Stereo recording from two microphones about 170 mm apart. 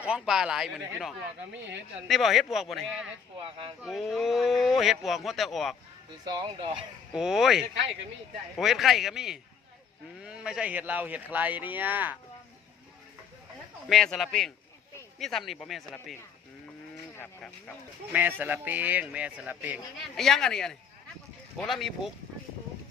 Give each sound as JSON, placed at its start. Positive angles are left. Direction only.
{"t": 0.0, "sound": "speech", "side_deg": -5}
{"t": 3.4, "sound": "speech", "side_deg": -35}
{"t": 3.8, "sound": "speech", "side_deg": 0}
{"t": 6.2, "sound": "speech", "side_deg": -25}
{"t": 7.1, "sound": "a man's voice", "side_deg": -5}
{"t": 13.8, "sound": "speech", "side_deg": 0}
{"t": 18.1, "sound": "a man's voice", "side_deg": -10}